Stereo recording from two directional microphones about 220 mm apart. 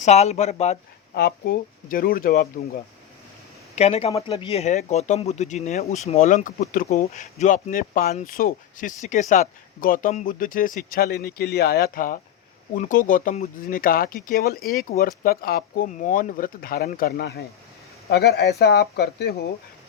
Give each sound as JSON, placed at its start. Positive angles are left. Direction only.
{"t": 0.0, "sound": "speech", "side_deg": 30}
{"t": 1.1, "sound": "speech", "side_deg": 45}
{"t": 3.8, "sound": "speech", "side_deg": 30}